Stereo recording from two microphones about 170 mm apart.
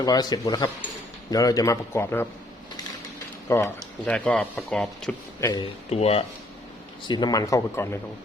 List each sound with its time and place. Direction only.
0.0 s a man's voice: 25° left (ahead or behind)
3.5 s speech: 15° left (ahead or behind)
5.4 s a man's voice: 25° left (ahead or behind)
5.9 s speech: 35° left (ahead or behind)
7.1 s a man's voice: 25° left (ahead or behind)